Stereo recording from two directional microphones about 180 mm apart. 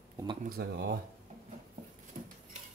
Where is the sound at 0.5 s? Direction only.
65° right (ahead or behind).